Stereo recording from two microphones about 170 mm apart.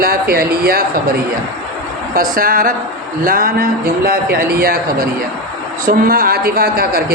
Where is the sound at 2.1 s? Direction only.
55° right (ahead or behind).